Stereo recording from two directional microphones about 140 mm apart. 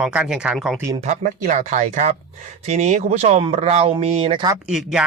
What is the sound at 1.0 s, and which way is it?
Speech, 60° right (ahead or behind).